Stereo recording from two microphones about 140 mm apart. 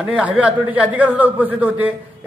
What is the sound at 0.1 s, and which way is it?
A man's voice, 10° right (ahead or behind).